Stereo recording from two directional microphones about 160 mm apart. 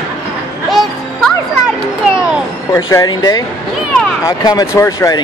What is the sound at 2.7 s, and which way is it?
Speech, 20° left (ahead or behind).